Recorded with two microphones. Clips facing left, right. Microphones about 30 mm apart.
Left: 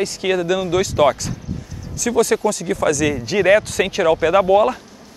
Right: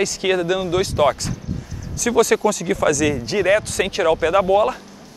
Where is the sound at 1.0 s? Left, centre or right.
Centre.